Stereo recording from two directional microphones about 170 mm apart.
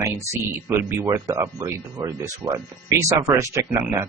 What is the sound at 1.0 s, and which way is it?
Speech, 20° right (ahead or behind).